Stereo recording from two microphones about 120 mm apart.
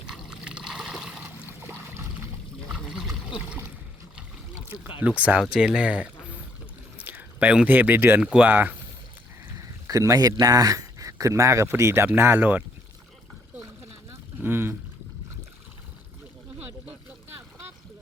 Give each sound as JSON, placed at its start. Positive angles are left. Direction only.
{"t": 0.1, "sound": "water", "side_deg": -5}
{"t": 1.6, "sound": "a sound", "side_deg": -20}
{"t": 2.9, "sound": "a sound", "side_deg": -5}
{"t": 4.9, "sound": "speech", "side_deg": -10}
{"t": 9.8, "sound": "speech", "side_deg": -25}
{"t": 14.1, "sound": "vehicle", "side_deg": -20}